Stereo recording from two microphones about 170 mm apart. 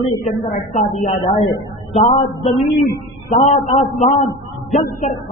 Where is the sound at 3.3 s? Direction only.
45° left (ahead or behind).